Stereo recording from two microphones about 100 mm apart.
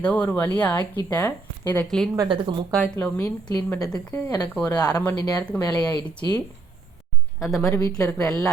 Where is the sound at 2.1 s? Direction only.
50° right (ahead or behind).